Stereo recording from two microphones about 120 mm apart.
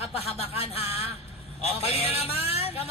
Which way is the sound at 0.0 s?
55° left (ahead or behind).